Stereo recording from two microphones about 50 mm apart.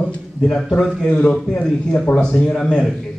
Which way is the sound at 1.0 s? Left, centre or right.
Left.